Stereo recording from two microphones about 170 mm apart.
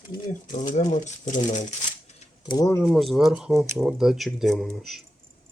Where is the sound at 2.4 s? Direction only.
25° left (ahead or behind).